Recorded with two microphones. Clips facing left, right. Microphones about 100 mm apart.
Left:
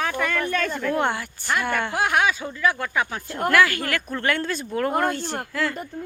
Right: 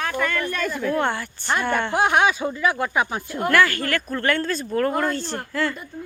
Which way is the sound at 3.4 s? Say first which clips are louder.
Even; 5° left (ahead or behind).